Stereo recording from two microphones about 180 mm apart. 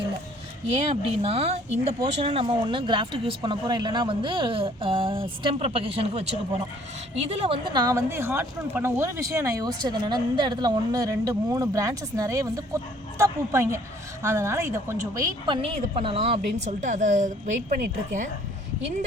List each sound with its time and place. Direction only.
0.9 s speech: 35° right (ahead or behind)
15.6 s a woman's voice: 30° right (ahead or behind); by 18.3 s 50° right (ahead or behind)